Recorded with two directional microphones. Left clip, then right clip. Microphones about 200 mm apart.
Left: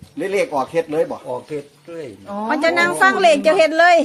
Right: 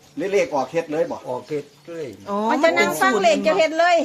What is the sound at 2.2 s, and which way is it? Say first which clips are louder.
Speech: right 4 dB; 55° right (ahead or behind).